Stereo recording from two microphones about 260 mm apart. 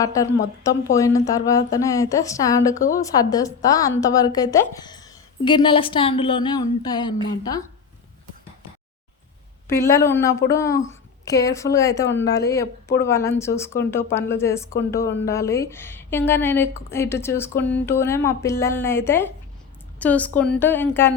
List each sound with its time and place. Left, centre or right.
0.0 s a woman's voice: centre
9.6 s a woman's voice: centre